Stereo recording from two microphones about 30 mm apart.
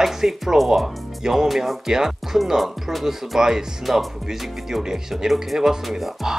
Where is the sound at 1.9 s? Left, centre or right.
Centre.